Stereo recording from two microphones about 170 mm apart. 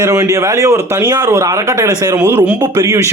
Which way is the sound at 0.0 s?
20° right (ahead or behind).